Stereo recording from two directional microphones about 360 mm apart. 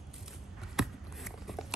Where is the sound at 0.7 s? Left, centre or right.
Centre.